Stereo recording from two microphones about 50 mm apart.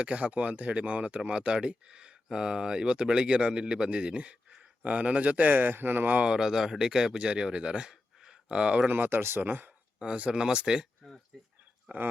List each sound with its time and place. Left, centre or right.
0.0 s speech: right
6.2 s speech: centre
8.9 s speech: right
10.0 s speech: right
11.9 s speech: right